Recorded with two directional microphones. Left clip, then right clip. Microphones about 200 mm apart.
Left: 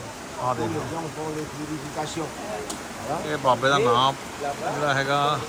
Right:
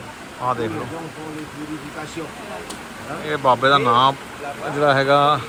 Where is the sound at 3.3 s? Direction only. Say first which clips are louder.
Right 6 dB; 15° left (ahead or behind).